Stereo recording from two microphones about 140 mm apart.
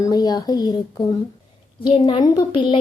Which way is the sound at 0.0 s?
25° left (ahead or behind).